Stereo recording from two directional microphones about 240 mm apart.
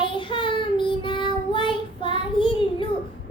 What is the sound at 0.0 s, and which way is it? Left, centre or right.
Child singing, centre.